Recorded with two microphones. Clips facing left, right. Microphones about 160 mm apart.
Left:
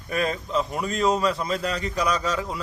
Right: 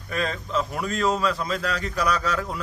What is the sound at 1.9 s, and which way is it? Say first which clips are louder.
Speech: right 1 dB; 15° left (ahead or behind).